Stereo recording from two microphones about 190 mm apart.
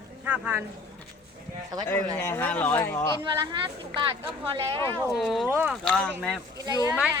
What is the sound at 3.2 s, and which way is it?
A woman's voice, 25° right (ahead or behind).